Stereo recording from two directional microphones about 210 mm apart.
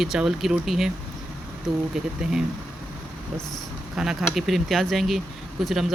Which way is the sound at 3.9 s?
Centre (ahead or behind).